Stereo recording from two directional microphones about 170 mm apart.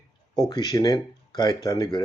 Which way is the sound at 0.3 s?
25° left (ahead or behind).